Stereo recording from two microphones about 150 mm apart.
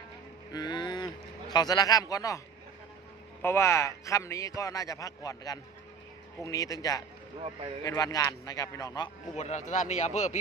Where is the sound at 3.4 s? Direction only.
15° left (ahead or behind).